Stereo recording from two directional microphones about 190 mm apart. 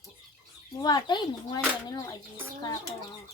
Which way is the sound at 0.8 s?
20° left (ahead or behind).